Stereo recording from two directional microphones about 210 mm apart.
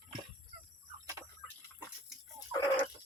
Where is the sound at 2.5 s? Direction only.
15° left (ahead or behind).